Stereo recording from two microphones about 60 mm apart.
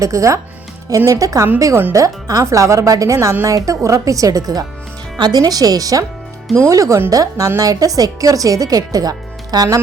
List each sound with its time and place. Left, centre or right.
0.0 s speech: right
6.6 s speech: right